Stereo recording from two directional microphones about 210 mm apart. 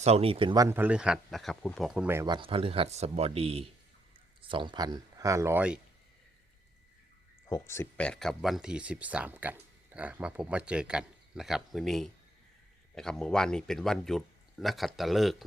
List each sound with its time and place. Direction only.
0.0 s speech: 30° right (ahead or behind); by 2.0 s centre (ahead or behind)
2.0 s speech: 15° right (ahead or behind)
7.5 s speech: 10° left (ahead or behind)